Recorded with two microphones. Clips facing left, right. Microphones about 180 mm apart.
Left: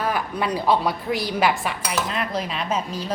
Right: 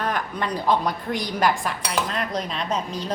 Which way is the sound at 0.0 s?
5° left (ahead or behind).